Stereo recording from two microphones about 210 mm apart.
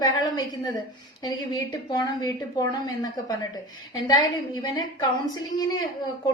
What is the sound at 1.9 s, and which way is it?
A woman's voice, 20° left (ahead or behind).